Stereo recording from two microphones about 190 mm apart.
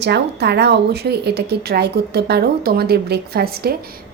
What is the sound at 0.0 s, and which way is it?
A woman's voice, 60° right (ahead or behind).